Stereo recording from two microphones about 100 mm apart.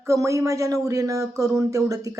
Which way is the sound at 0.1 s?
30° right (ahead or behind).